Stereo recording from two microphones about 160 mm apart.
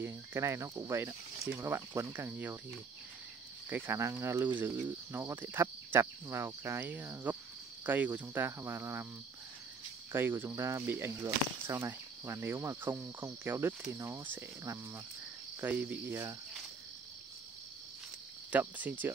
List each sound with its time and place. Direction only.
0.0 s speech: 15° right (ahead or behind)
1.5 s cricket: 15° right (ahead or behind)
3.6 s cricket: 15° right (ahead or behind)
10.1 s cricket: 15° right (ahead or behind)
18.5 s cricket: 10° right (ahead or behind)